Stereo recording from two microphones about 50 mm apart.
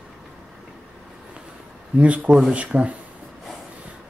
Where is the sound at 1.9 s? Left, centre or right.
Right.